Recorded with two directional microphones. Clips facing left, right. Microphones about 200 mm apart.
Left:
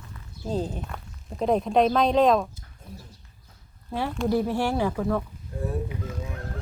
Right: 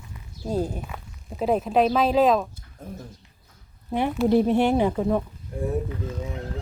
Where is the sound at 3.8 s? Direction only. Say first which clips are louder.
Right 4 dB; 20° right (ahead or behind).